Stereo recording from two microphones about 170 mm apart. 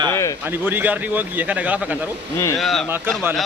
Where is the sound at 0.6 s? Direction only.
10° right (ahead or behind).